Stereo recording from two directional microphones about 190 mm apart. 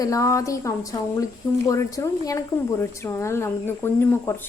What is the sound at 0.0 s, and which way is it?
A woman's voice, 15° left (ahead or behind).